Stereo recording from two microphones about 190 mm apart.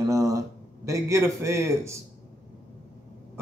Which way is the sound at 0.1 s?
15° right (ahead or behind).